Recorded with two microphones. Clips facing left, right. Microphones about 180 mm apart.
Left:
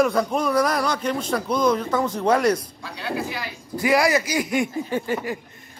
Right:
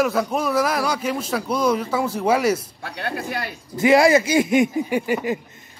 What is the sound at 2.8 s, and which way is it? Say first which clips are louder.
Speech: even; 60° right (ahead or behind).